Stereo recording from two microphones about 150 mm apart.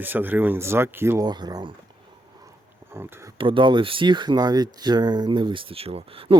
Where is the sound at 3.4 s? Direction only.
35° right (ahead or behind).